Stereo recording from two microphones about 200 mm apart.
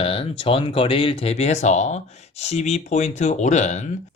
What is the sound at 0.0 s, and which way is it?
Speech, 25° left (ahead or behind).